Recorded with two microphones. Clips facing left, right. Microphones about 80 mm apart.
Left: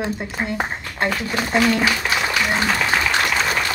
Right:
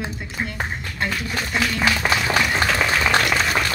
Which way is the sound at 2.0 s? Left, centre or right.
Right.